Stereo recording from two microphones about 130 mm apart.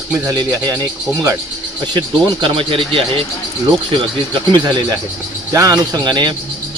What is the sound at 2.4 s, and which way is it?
Speech, 40° right (ahead or behind).